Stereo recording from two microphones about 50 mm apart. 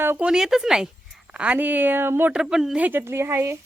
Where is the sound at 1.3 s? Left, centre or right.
Right.